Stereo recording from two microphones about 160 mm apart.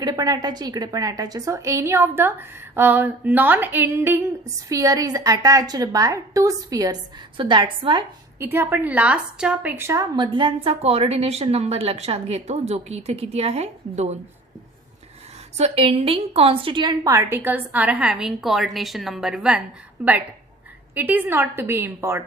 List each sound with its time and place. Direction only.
0.0 s a woman's voice: 25° right (ahead or behind)
8.4 s a woman's voice: 15° right (ahead or behind); by 14.2 s 45° right (ahead or behind)
15.5 s a woman's voice: 40° right (ahead or behind); by 22.2 s 15° right (ahead or behind)